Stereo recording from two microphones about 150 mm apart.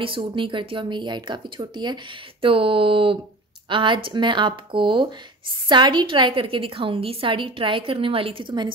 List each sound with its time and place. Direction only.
0.0 s a woman's voice: 35° right (ahead or behind)